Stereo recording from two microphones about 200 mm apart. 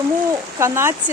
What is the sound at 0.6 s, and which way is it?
Speech, 15° right (ahead or behind).